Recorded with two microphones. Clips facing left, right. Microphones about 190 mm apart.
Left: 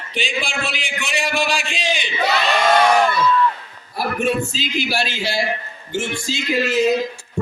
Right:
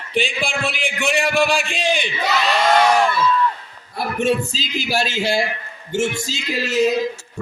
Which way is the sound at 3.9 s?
25° right (ahead or behind).